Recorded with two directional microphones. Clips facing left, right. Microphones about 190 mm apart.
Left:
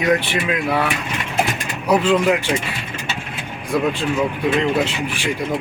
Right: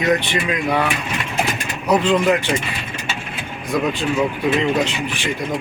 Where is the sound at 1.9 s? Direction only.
10° left (ahead or behind).